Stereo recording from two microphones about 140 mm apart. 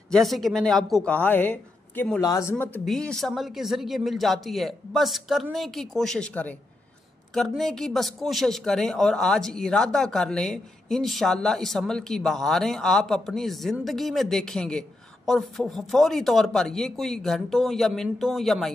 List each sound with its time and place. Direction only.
0.1 s speech: centre (ahead or behind); by 2.5 s 20° left (ahead or behind)
2.8 s speech: 5° left (ahead or behind)